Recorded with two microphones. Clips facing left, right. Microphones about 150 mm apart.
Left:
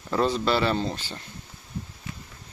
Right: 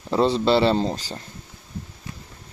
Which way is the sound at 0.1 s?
25° right (ahead or behind).